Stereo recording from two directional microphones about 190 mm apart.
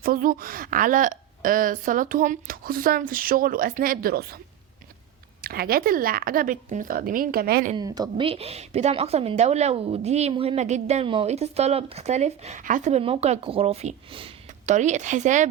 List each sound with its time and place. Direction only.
0.0 s a woman's voice: 50° right (ahead or behind)
5.4 s a woman's voice: 50° right (ahead or behind)
7.8 s a woman's voice: 20° right (ahead or behind); by 15.4 s 40° right (ahead or behind)